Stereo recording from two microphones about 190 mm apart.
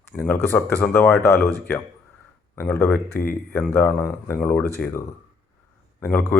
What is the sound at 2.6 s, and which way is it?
A man's voice, 15° left (ahead or behind).